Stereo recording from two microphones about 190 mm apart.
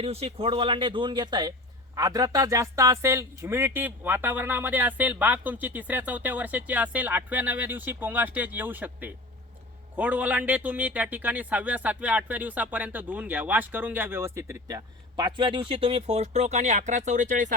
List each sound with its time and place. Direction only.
0.0 s a man's voice: 30° right (ahead or behind)